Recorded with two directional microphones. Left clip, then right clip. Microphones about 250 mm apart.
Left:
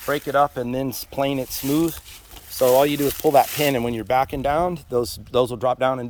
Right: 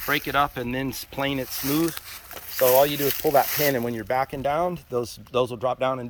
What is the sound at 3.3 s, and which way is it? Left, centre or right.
Speech, left.